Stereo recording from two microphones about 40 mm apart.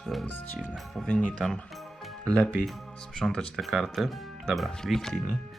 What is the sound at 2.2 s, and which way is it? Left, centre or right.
Speech, left.